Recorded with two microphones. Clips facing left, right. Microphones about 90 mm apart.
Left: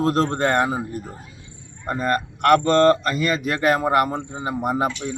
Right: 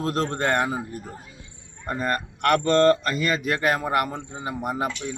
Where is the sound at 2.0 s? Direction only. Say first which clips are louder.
Left 4 dB; 15° left (ahead or behind).